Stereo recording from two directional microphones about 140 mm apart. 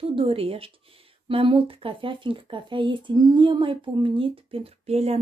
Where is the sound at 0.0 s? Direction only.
40° right (ahead or behind).